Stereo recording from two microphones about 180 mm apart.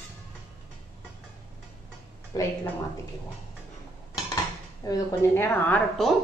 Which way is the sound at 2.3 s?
20° left (ahead or behind).